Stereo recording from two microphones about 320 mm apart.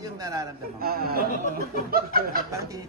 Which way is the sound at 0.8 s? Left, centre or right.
Right.